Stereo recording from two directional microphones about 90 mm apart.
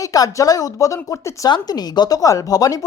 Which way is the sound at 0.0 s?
40° left (ahead or behind).